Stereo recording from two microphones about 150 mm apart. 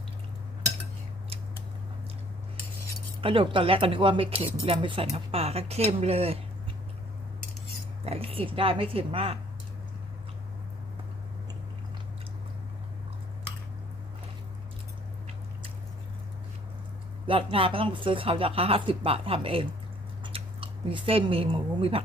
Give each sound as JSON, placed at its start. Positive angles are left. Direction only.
{"t": 3.2, "sound": "speech", "side_deg": -35}
{"t": 8.0, "sound": "speech", "side_deg": -40}
{"t": 17.2, "sound": "speech", "side_deg": -35}